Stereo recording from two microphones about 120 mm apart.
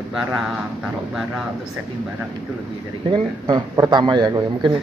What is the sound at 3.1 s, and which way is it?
A man's voice, 35° right (ahead or behind).